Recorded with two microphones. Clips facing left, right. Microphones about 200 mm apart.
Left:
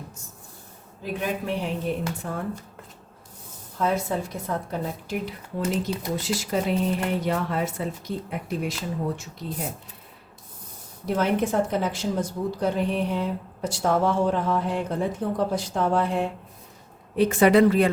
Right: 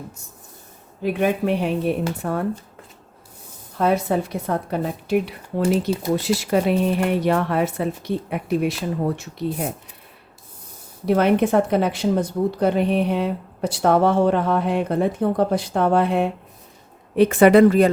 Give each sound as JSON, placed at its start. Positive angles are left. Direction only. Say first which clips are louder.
{"t": 1.0, "sound": "a woman's voice", "louder": "right 8 dB", "side_deg": -65}
{"t": 3.8, "sound": "a woman's voice", "louder": "right 5 dB", "side_deg": -65}
{"t": 11.0, "sound": "a woman's voice", "louder": "right 6 dB", "side_deg": -65}